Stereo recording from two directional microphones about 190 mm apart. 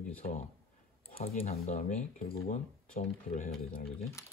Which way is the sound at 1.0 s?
30° left (ahead or behind).